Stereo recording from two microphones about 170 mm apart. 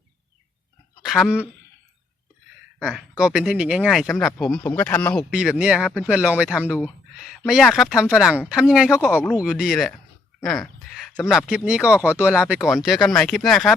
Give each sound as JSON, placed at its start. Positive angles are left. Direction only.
{"t": 1.0, "sound": "speech", "side_deg": 0}
{"t": 2.7, "sound": "speech", "side_deg": -5}
{"t": 5.3, "sound": "speech", "side_deg": -5}
{"t": 10.9, "sound": "speech", "side_deg": 0}